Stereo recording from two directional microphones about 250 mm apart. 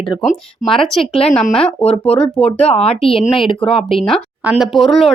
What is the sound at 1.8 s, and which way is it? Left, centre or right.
A woman's voice, left.